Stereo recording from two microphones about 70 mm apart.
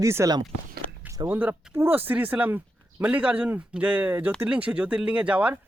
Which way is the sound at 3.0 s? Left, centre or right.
Centre.